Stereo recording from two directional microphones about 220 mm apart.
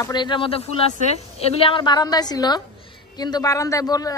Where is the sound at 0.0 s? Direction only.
20° left (ahead or behind).